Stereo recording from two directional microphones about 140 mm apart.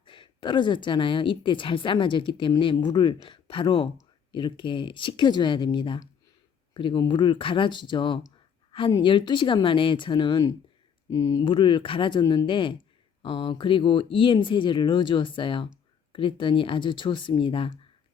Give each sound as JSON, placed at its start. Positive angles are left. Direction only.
{"t": 0.0, "sound": "a woman's voice", "side_deg": 35}
{"t": 12.2, "sound": "speech", "side_deg": 25}
{"t": 12.5, "sound": "a woman's voice", "side_deg": 35}